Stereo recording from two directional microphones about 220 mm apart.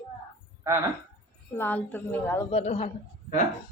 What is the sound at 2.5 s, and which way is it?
Speech, 25° left (ahead or behind).